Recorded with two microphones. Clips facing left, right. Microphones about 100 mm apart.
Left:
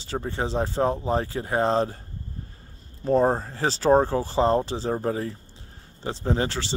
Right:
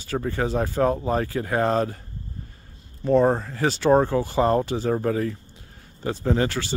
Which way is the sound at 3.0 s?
35° left (ahead or behind).